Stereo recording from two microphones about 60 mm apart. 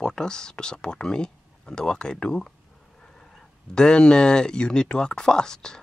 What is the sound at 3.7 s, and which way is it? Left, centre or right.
Speech, centre.